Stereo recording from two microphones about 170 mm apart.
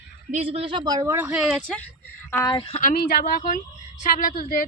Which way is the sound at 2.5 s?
35° left (ahead or behind).